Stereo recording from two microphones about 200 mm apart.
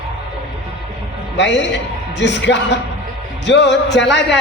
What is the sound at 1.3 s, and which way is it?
A man's voice, 60° left (ahead or behind).